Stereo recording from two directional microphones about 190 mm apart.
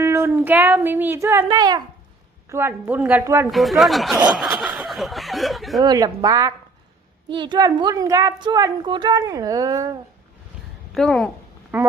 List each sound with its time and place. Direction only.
0.0 s a woman's voice: 15° right (ahead or behind)
3.5 s speech: centre (ahead or behind)
5.8 s speech: 20° right (ahead or behind)
10.9 s speech: centre (ahead or behind)
11.7 s a woman's voice: 10° right (ahead or behind)